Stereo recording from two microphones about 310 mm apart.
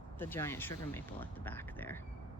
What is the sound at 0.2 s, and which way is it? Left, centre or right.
Speech, centre.